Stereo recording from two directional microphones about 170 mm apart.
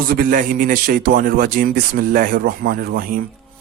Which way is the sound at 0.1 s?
55° right (ahead or behind).